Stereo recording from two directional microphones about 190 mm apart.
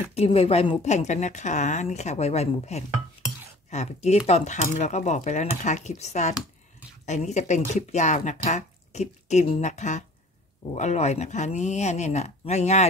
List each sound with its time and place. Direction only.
0.1 s speech: 30° left (ahead or behind)